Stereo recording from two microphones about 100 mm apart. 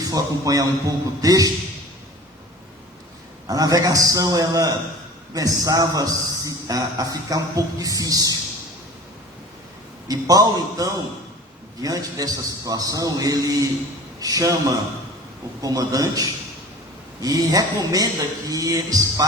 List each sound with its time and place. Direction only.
0.0 s a man's voice: 35° right (ahead or behind)
3.4 s a man's voice: 40° right (ahead or behind)
10.1 s a man's voice: 40° right (ahead or behind)
15.6 s a man's voice: 40° right (ahead or behind)